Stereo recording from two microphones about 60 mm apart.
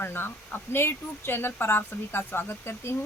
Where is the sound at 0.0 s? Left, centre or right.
Left.